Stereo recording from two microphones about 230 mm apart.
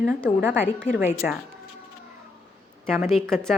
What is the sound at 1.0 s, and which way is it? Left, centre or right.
Speech, centre.